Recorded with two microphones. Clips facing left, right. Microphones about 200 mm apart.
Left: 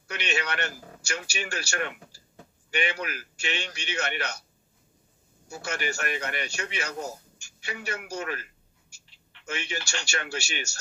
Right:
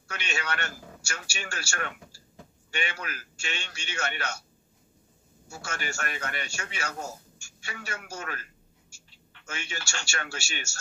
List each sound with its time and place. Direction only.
0.3 s a man's voice: 15° left (ahead or behind)
5.5 s a man's voice: 15° left (ahead or behind)
9.6 s a man's voice: 15° left (ahead or behind)